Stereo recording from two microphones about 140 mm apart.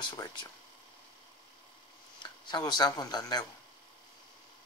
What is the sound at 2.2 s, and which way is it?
Speech, 30° left (ahead or behind).